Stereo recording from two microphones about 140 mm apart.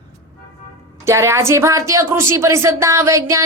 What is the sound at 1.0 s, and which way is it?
A woman's voice, 20° right (ahead or behind).